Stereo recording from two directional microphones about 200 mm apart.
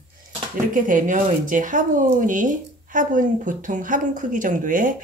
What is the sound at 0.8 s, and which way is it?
Speech, 40° right (ahead or behind).